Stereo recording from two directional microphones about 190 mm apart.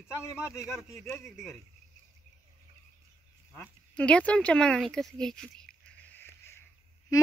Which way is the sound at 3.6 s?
5° left (ahead or behind).